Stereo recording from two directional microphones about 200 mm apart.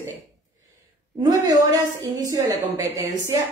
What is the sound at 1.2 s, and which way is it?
A woman's voice, 20° right (ahead or behind).